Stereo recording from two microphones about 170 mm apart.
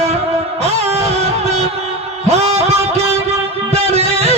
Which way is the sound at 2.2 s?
40° right (ahead or behind).